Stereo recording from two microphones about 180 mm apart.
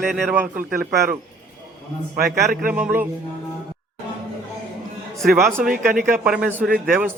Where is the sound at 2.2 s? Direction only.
55° right (ahead or behind).